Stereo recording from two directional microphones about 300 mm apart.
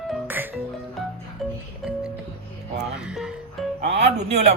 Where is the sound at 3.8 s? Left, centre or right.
Right.